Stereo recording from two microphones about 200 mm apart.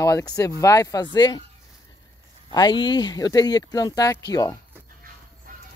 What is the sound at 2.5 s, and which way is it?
Speech, 20° left (ahead or behind).